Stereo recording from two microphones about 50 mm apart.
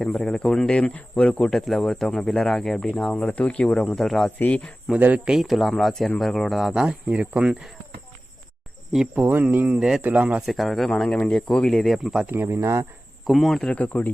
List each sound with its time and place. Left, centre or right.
0.0 s speech: centre
0.9 s speech: left
1.5 s speech: centre
3.2 s speech: left
3.8 s speech: centre
4.4 s speech: left
4.9 s speech: right
5.4 s speech: centre
6.7 s speech: centre
9.1 s speech: right
10.4 s speech: centre
12.5 s speech: right
13.2 s speech: centre
13.7 s speech: left